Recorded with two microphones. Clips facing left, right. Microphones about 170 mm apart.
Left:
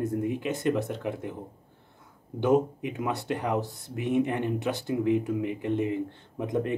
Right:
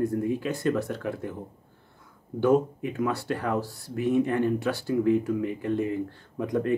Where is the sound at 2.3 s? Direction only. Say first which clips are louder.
Right 1 dB; 20° left (ahead or behind).